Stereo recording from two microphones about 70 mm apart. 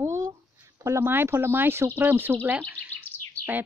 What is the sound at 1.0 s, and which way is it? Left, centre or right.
A woman's voice, right.